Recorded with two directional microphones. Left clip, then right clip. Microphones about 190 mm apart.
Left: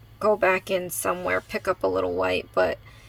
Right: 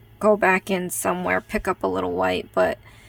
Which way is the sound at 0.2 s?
35° right (ahead or behind).